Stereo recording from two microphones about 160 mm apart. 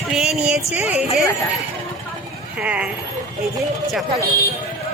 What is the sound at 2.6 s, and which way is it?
Speech, 10° right (ahead or behind).